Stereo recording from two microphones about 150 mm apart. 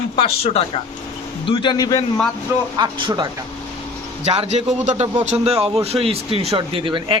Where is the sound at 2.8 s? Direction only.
30° right (ahead or behind).